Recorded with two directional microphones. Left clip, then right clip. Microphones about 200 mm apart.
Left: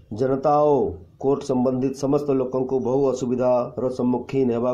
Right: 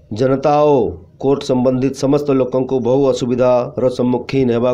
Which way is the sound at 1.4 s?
30° right (ahead or behind).